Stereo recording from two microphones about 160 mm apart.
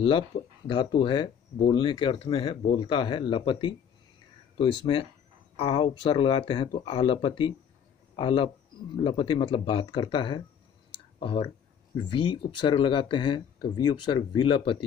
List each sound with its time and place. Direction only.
0.3 s speech: 40° left (ahead or behind)
5.6 s speech: 35° left (ahead or behind)